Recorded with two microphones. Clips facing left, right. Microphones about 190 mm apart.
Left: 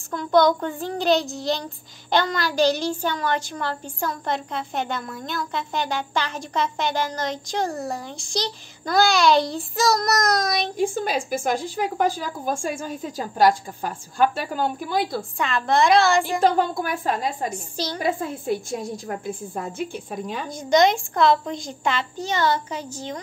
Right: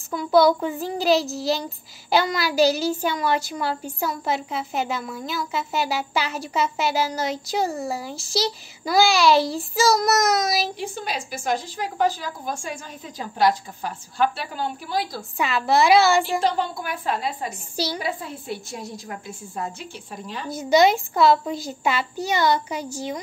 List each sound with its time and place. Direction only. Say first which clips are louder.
0.1 s a child's voice: right 1 dB; 5° right (ahead or behind)
10.8 s a woman's voice: left 7 dB; 50° left (ahead or behind)
15.3 s a child's voice: right 2 dB; 5° right (ahead or behind)
16.3 s a woman's voice: left 3 dB; 50° left (ahead or behind)
17.5 s a woman's voice: right 1 dB; 10° right (ahead or behind)
17.9 s a woman's voice: left 4 dB; 45° left (ahead or behind)
20.4 s a woman's voice: right 1 dB; 5° right (ahead or behind)